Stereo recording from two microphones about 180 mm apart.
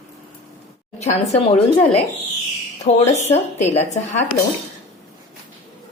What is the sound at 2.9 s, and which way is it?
A woman's voice, 35° left (ahead or behind).